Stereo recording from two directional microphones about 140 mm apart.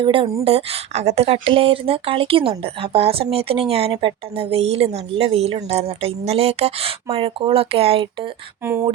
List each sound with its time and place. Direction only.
0.0 s speech: 40° right (ahead or behind)
8.6 s speech: 15° right (ahead or behind)